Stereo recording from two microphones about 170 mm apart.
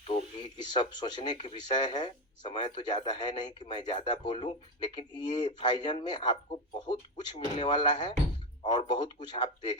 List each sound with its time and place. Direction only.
0.1 s speech: 25° left (ahead or behind)